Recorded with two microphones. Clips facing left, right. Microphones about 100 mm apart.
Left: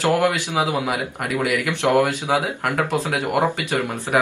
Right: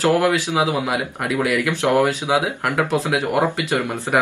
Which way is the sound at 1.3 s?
20° left (ahead or behind).